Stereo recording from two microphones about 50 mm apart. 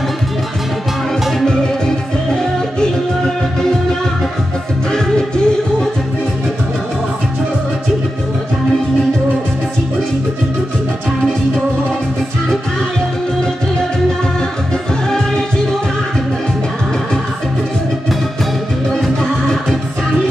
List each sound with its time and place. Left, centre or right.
4.9 s music: centre
19.4 s music: centre